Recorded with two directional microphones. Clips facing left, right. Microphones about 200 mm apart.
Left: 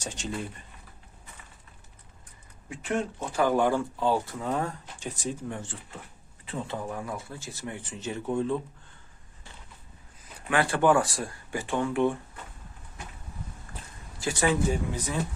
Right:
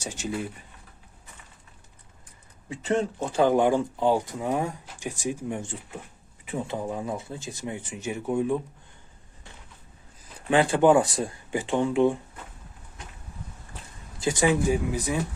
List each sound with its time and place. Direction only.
0.0 s speech: 10° right (ahead or behind)
2.6 s speech: 30° right (ahead or behind)
3.4 s speech: 20° right (ahead or behind)
10.5 s speech: 20° right (ahead or behind)
14.2 s speech: 20° right (ahead or behind)